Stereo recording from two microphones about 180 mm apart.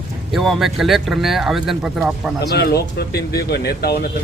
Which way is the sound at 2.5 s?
65° left (ahead or behind).